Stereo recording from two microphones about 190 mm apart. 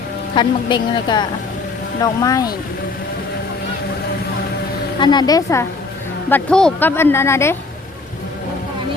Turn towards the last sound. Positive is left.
turn(degrees=15)  # may be behind; listen again after turning